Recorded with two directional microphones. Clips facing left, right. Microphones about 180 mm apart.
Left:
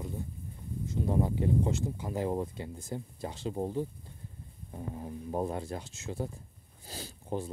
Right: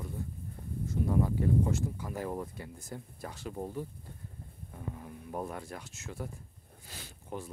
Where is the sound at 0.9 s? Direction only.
25° left (ahead or behind).